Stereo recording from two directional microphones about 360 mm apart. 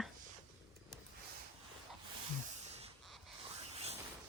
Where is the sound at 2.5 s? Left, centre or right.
Centre.